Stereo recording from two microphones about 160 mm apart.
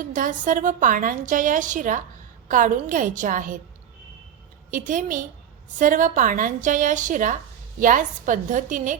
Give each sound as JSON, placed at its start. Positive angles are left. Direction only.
{"t": 0.1, "sound": "a woman's voice", "side_deg": -55}
{"t": 4.7, "sound": "a woman's voice", "side_deg": -55}